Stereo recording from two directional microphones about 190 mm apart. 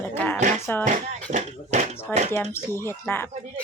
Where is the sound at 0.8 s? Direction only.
40° right (ahead or behind).